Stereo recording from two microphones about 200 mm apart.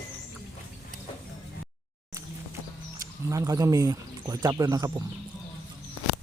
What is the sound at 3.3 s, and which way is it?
Speech, 15° right (ahead or behind).